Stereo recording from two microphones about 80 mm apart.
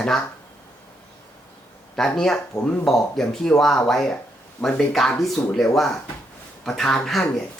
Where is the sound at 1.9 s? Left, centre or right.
Centre.